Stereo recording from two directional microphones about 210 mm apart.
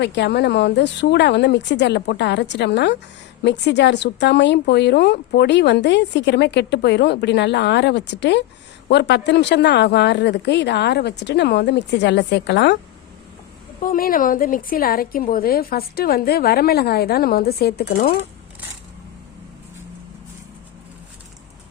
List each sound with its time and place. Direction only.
0.0 s a woman's voice: 55° left (ahead or behind)
13.8 s a woman's voice: 40° left (ahead or behind)